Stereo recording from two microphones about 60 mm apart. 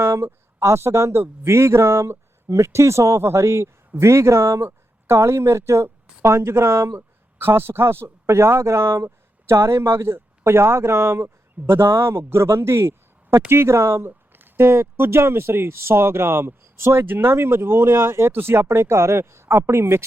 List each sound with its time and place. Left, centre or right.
0.0 s a man's voice: right